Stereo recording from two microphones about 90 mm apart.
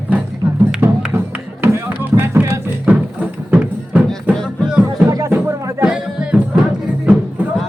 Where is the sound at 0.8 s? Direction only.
15° right (ahead or behind).